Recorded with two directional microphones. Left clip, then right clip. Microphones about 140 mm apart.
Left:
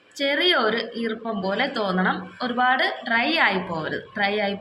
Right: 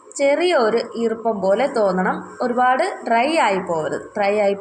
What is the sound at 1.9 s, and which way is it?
A woman's voice, 20° right (ahead or behind).